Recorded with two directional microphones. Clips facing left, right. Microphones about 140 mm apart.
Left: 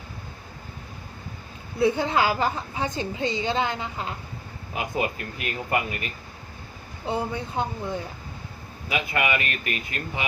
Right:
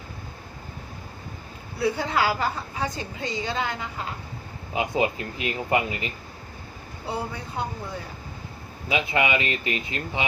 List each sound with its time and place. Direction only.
1.8 s a woman's voice: 25° left (ahead or behind)
4.7 s speech: 20° right (ahead or behind)
7.1 s a woman's voice: 25° left (ahead or behind)
8.9 s speech: 20° right (ahead or behind)